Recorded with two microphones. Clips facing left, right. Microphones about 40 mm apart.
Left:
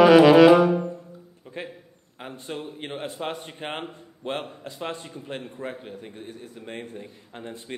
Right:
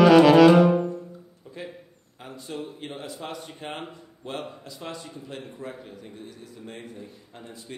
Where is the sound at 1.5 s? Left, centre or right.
Left.